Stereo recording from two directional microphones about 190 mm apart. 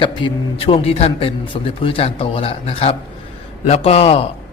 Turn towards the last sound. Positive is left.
turn(degrees=30)  # may be behind; listen again after turning